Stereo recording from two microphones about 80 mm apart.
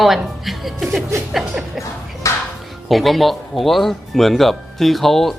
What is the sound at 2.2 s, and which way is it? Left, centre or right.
Music, left.